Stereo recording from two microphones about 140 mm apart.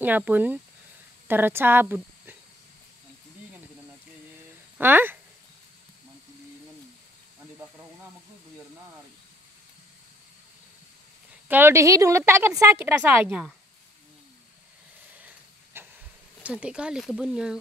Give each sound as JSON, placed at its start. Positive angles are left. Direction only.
{"t": 0.0, "sound": "a woman's voice", "side_deg": -10}
{"t": 4.7, "sound": "speech", "side_deg": -15}
{"t": 11.4, "sound": "a woman's voice", "side_deg": -15}
{"t": 15.1, "sound": "hiss", "side_deg": -10}
{"t": 16.4, "sound": "speech", "side_deg": -10}